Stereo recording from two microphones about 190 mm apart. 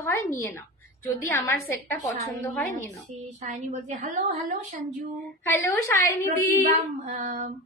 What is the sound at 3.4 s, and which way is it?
Speech, 40° right (ahead or behind).